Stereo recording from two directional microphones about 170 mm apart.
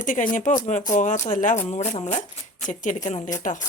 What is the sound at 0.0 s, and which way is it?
Speech, 50° left (ahead or behind).